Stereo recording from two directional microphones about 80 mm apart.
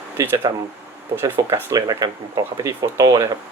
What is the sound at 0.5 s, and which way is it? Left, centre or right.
Speech, right.